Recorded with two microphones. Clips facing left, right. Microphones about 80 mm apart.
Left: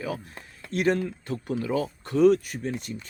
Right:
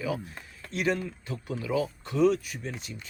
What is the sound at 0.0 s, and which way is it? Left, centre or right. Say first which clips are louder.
Speech: right 1 dB; left.